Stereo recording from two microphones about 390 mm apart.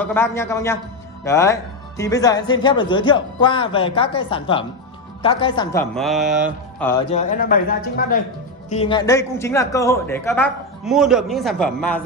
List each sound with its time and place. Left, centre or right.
0.0 s speech: centre
7.1 s speech: centre